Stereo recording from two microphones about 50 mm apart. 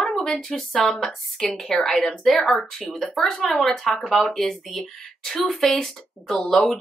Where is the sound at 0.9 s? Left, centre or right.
Centre.